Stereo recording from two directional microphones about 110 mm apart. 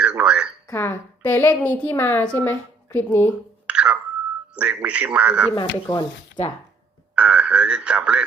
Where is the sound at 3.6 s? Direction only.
10° right (ahead or behind).